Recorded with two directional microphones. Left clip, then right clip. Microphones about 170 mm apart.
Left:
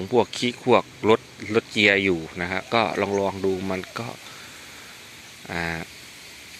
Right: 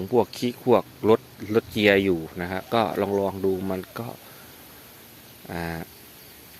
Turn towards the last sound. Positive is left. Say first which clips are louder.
# left 4 dB
turn(degrees=-10)  # may be behind; listen again after turning